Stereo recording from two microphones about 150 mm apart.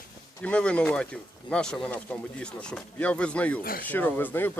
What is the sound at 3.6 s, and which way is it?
Speech, 75° left (ahead or behind).